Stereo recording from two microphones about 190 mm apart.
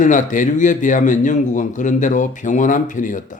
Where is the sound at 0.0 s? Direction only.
40° left (ahead or behind).